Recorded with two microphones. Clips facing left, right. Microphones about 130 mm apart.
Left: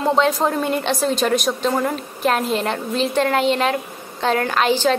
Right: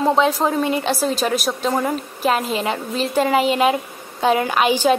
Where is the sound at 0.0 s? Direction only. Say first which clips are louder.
Right 1 dB; centre (ahead or behind).